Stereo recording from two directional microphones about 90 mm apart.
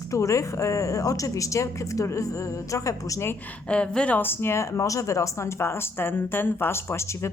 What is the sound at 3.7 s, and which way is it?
Speech, 10° left (ahead or behind).